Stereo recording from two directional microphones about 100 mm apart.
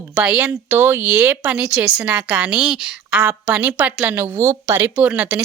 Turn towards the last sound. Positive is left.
turn(degrees=-15)  # may be behind; listen again after turning